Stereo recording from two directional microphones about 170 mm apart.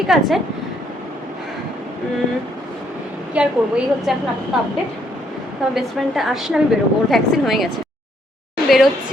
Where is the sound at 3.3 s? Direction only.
5° right (ahead or behind).